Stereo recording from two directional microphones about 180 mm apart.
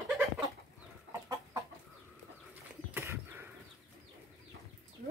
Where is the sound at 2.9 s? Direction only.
15° right (ahead or behind).